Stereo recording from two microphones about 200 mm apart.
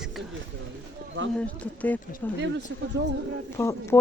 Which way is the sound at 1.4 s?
5° left (ahead or behind).